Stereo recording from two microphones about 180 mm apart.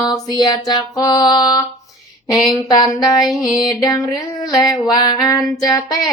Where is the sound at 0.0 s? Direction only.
20° left (ahead or behind).